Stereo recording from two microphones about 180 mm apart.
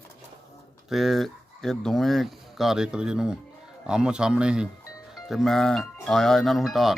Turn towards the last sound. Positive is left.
turn(degrees=0)  # may be behind; listen again after turning